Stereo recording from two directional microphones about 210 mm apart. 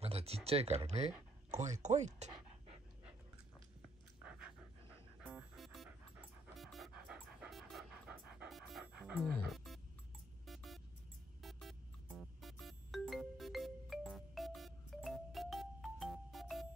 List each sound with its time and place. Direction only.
0.0 s a sound: 30° right (ahead or behind)
0.5 s speech: 30° right (ahead or behind)
4.2 s pant: 5° right (ahead or behind)
5.2 s music: centre (ahead or behind)